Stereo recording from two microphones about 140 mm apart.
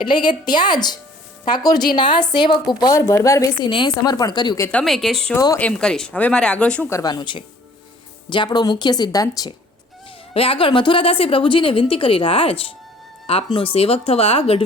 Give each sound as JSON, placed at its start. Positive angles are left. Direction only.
{"t": 0.0, "sound": "a woman's voice", "side_deg": 35}
{"t": 4.7, "sound": "speech", "side_deg": 5}
{"t": 6.9, "sound": "a woman's voice", "side_deg": 30}
{"t": 10.3, "sound": "a woman's voice", "side_deg": 40}